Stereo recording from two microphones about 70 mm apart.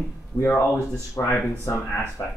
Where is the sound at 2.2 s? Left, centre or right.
Left.